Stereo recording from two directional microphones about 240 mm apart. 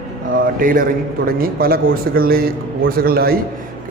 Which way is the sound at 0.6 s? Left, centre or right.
Right.